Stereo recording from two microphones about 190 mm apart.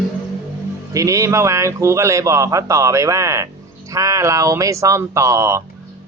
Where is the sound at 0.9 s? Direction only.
15° right (ahead or behind).